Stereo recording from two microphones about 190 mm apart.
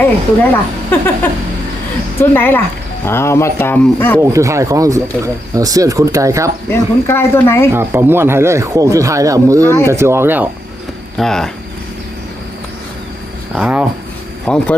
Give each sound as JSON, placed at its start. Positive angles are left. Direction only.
{"t": 0.9, "sound": "speech", "side_deg": 10}
{"t": 2.3, "sound": "speech", "side_deg": 10}
{"t": 4.2, "sound": "speech", "side_deg": -15}
{"t": 6.7, "sound": "speech", "side_deg": 10}
{"t": 7.7, "sound": "speech", "side_deg": -10}
{"t": 9.6, "sound": "speech", "side_deg": 15}
{"t": 9.9, "sound": "speech", "side_deg": -15}
{"t": 11.2, "sound": "speech", "side_deg": 0}
{"t": 13.6, "sound": "speech", "side_deg": -5}
{"t": 14.4, "sound": "speech", "side_deg": 5}